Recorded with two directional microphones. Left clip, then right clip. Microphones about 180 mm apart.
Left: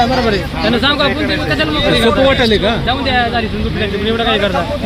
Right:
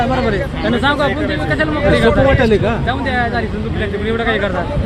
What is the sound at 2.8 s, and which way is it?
Speech, 40° left (ahead or behind).